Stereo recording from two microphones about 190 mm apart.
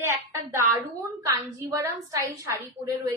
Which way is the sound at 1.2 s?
15° right (ahead or behind).